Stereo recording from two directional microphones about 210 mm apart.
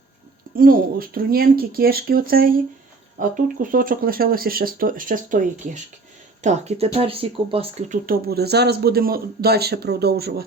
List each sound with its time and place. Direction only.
0.5 s speech: 45° right (ahead or behind)